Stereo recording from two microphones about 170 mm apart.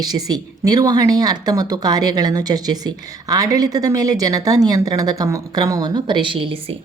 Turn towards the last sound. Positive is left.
turn(degrees=-30)  # may be behind; listen again after turning